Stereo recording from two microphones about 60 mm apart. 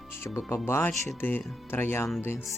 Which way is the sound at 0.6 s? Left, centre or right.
Left.